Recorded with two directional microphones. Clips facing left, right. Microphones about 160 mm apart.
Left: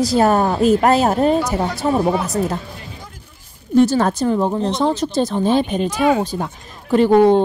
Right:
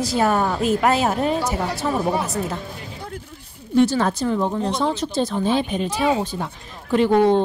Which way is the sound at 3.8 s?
45° left (ahead or behind).